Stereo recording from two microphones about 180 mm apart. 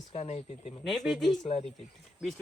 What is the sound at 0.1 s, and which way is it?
Speech, 35° left (ahead or behind).